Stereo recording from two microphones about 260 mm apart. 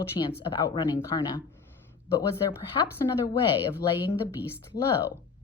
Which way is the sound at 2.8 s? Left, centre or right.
Centre.